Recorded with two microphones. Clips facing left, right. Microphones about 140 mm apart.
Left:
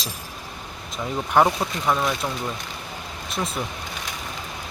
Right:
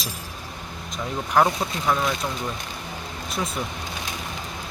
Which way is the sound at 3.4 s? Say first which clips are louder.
Left 1 dB; centre (ahead or behind).